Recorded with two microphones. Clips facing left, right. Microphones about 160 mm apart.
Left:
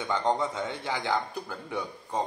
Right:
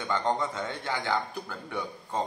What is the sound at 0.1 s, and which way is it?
A man's voice, 15° left (ahead or behind).